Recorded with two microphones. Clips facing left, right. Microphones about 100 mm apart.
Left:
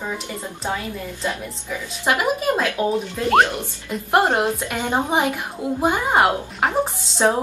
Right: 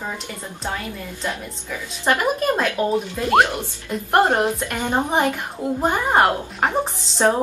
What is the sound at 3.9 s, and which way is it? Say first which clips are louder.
A woman's voice: right 1 dB; centre (ahead or behind).